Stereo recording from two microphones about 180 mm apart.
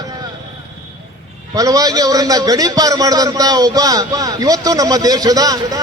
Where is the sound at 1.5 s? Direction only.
20° right (ahead or behind).